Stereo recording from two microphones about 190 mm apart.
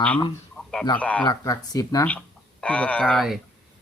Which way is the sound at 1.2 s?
20° left (ahead or behind).